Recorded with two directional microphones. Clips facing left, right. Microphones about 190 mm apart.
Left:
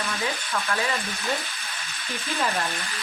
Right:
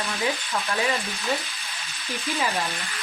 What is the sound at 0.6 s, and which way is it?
Speech, 20° right (ahead or behind).